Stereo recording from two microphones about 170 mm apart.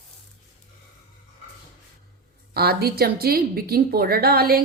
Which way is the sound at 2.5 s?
65° right (ahead or behind).